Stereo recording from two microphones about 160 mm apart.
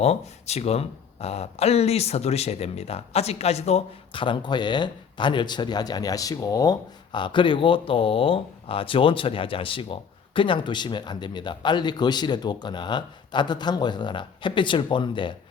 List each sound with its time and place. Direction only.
0.0 s speech: 40° left (ahead or behind)